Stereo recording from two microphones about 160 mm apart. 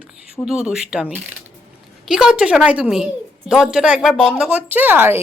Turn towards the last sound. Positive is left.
turn(degrees=-15)  # may be behind; listen again after turning